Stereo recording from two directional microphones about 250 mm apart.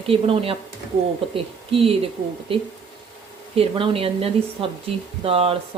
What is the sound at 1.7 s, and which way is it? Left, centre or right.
Speech, right.